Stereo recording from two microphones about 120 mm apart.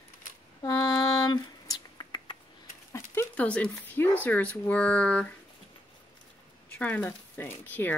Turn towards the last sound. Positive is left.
turn(degrees=15)  # may be behind; listen again after turning